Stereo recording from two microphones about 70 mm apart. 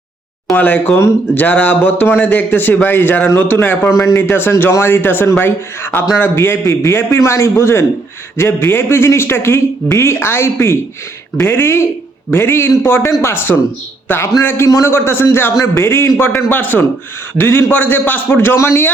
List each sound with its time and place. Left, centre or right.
0.5 s a man's voice: left
0.9 s a man's voice: left
1.5 s a man's voice: left